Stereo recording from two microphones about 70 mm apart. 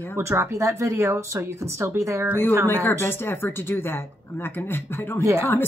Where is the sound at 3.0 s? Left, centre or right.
Left.